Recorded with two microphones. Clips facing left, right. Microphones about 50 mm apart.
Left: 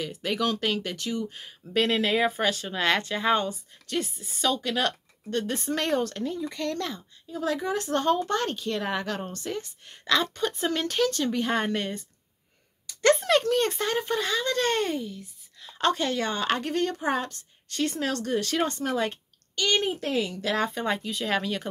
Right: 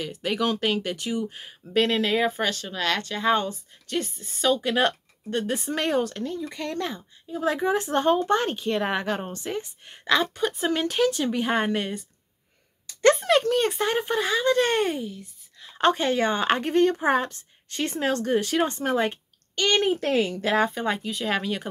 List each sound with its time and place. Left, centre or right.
0.0 s a child's voice: centre
1.8 s speech: centre
2.5 s speech: centre
3.2 s speech: centre
4.5 s a child's voice: centre
7.2 s a child's voice: right; by 12.1 s centre
13.1 s a child's voice: centre; by 19.1 s right
19.5 s a child's voice: right
20.5 s a child's voice: centre